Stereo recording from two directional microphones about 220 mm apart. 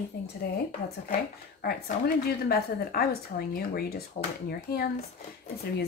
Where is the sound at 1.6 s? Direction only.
40° left (ahead or behind).